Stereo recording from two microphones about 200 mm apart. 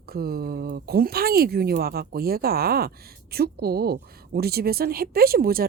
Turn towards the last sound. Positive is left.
turn(degrees=-50)  # may be behind; listen again after turning